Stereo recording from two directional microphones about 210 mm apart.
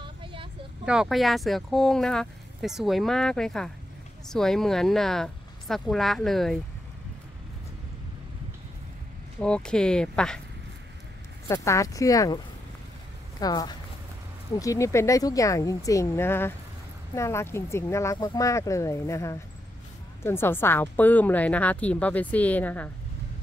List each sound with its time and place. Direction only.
0.0 s vehicle: 25° right (ahead or behind)
0.8 s speech: centre (ahead or behind)
9.4 s speech: 5° left (ahead or behind)
11.4 s speech: 15° left (ahead or behind)
13.4 s speech: 20° left (ahead or behind)